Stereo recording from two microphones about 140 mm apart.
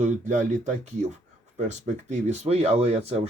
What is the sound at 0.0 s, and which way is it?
Speech, 60° right (ahead or behind).